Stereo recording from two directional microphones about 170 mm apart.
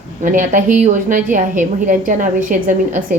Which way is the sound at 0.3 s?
50° right (ahead or behind).